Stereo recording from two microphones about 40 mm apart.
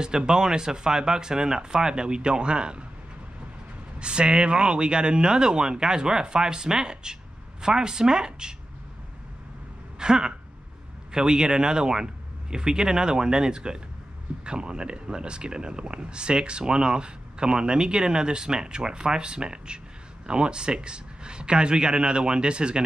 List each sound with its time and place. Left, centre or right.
0.3 s speech: centre
4.0 s speech: right
9.9 s a sound: centre
11.1 s speech: centre